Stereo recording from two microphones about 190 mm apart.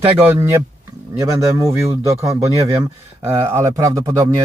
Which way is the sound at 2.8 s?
15° right (ahead or behind).